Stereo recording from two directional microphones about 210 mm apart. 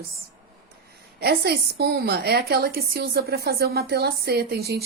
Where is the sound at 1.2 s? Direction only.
50° right (ahead or behind).